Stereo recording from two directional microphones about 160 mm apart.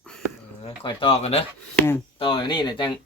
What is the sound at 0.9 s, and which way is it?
Speech, 35° left (ahead or behind).